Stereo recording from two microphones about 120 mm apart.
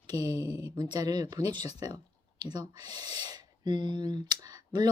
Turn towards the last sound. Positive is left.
turn(degrees=-35)  # may be behind; listen again after turning